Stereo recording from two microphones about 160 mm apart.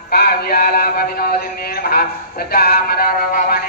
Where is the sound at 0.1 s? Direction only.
75° left (ahead or behind).